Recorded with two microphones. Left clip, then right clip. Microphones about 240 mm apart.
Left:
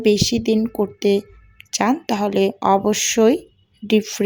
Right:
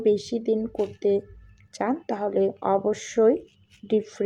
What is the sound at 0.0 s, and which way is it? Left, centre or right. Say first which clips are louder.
Speech: left 6 dB; left.